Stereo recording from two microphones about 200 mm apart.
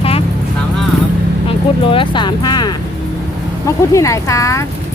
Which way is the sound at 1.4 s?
25° left (ahead or behind).